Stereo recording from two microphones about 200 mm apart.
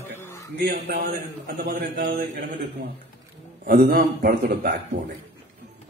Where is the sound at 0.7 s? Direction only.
55° right (ahead or behind).